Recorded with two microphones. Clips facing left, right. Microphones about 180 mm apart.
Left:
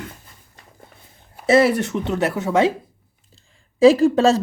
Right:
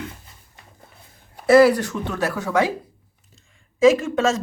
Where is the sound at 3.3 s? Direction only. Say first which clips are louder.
Left 1 dB; 35° left (ahead or behind).